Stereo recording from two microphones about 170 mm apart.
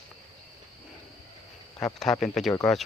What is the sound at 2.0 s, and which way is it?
Speech, 5° left (ahead or behind).